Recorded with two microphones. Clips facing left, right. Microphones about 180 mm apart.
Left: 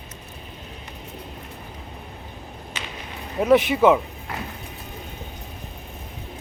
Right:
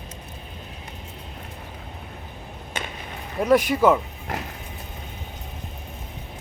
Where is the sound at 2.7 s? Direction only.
50° right (ahead or behind).